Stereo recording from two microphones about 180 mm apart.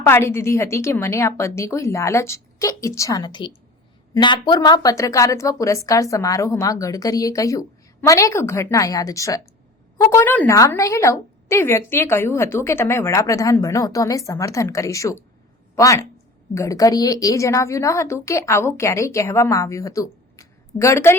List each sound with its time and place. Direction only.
0.0 s a woman's voice: 15° left (ahead or behind)